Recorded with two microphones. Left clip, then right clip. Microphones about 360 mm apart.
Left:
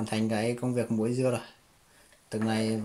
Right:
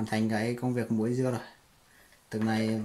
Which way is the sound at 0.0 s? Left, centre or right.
Centre.